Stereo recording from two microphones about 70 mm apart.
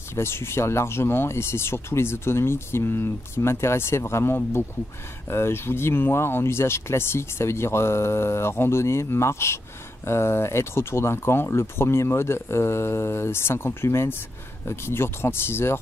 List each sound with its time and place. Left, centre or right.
0.1 s speech: left